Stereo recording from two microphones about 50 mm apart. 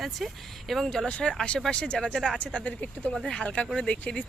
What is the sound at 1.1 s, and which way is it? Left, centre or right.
Speech, left.